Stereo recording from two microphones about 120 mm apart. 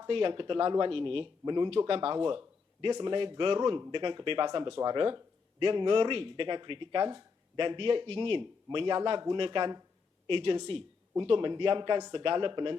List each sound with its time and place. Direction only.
0.1 s speech: 45° right (ahead or behind)
1.8 s speech: 50° right (ahead or behind)